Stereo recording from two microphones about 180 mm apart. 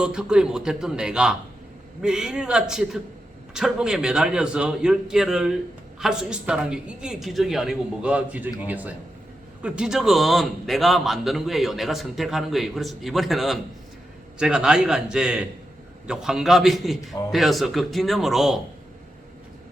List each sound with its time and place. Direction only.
0.0 s a man's voice: 5° right (ahead or behind)